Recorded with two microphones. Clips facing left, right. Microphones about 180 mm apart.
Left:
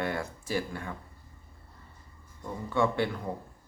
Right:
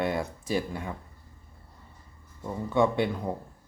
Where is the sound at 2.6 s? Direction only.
20° right (ahead or behind).